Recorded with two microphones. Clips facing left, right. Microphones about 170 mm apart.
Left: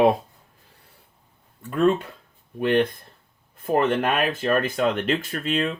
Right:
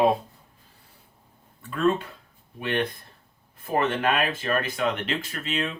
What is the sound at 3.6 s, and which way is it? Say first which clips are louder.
Speech: left 3 dB; 50° left (ahead or behind).